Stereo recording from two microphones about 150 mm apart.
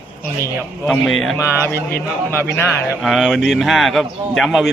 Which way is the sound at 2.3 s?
15° left (ahead or behind).